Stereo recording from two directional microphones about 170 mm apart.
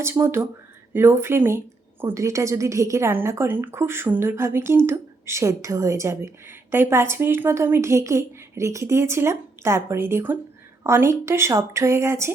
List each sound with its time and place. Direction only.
0.0 s a woman's voice: 15° right (ahead or behind)